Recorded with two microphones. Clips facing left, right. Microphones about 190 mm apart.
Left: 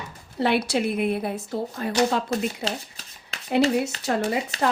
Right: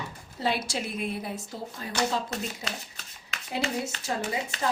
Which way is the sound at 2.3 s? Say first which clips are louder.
Left 8 dB; 35° left (ahead or behind).